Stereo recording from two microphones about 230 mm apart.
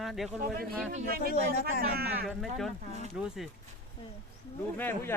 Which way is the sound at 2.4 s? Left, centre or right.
Centre.